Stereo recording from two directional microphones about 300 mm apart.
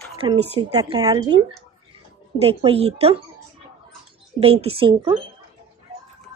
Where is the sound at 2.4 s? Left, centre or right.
Centre.